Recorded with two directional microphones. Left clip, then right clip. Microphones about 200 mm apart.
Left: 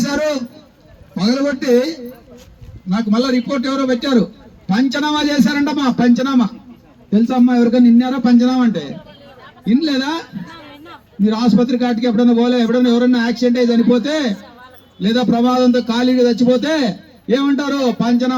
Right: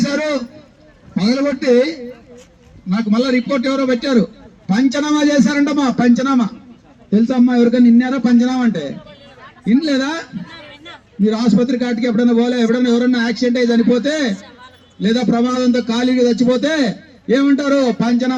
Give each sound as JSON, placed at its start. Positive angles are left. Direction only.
{"t": 1.2, "sound": "a man's voice", "side_deg": -45}
{"t": 3.0, "sound": "a man's voice", "side_deg": -45}
{"t": 10.7, "sound": "a sound", "side_deg": 35}
{"t": 11.2, "sound": "a man's voice", "side_deg": -55}